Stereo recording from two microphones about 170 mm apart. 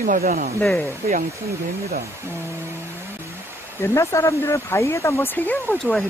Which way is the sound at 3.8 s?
15° left (ahead or behind).